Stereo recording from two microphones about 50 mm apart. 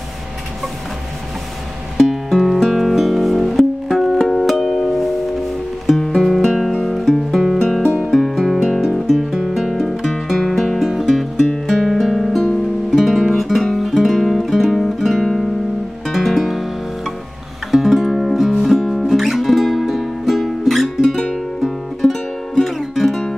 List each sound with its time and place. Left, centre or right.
2.0 s music: centre
17.6 s music: centre